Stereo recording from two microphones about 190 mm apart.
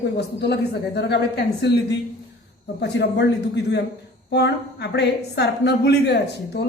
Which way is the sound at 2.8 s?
65° left (ahead or behind).